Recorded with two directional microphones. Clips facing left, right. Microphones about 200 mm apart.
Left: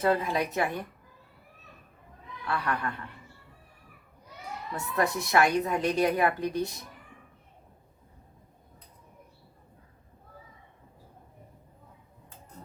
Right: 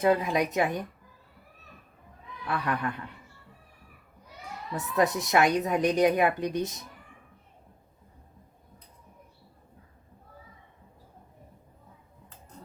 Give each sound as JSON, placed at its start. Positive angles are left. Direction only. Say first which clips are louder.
{"t": 0.0, "sound": "a woman's voice", "louder": "right 2 dB", "side_deg": -15}
{"t": 2.5, "sound": "a woman's voice", "louder": "right 1 dB", "side_deg": -15}
{"t": 4.7, "sound": "a woman's voice", "louder": "right 3 dB", "side_deg": -20}